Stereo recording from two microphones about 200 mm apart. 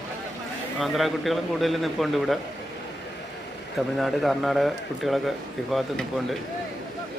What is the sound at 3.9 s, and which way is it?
Speech, centre (ahead or behind).